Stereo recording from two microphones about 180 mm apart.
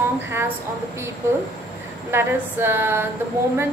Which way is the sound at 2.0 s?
15° right (ahead or behind).